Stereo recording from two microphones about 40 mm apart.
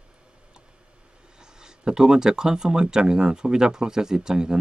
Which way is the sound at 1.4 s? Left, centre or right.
Centre.